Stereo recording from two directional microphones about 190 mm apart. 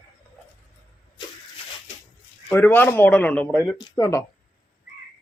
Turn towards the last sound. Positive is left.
turn(degrees=15)  # may be behind; listen again after turning